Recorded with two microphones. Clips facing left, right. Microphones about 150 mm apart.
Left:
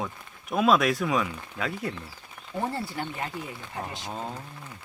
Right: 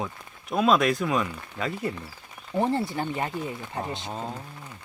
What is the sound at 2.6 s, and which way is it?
Speech, 20° right (ahead or behind).